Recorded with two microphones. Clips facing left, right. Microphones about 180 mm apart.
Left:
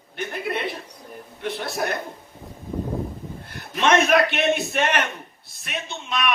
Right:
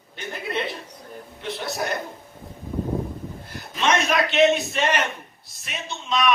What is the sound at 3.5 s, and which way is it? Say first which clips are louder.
A man's voice: left 3 dB; 55° left (ahead or behind).